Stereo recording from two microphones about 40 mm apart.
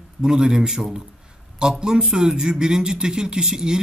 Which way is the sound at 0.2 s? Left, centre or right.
Centre.